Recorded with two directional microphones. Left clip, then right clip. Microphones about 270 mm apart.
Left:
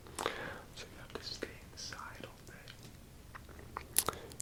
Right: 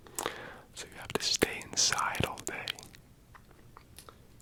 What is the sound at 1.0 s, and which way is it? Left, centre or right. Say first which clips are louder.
Whispering: right 15 dB; right.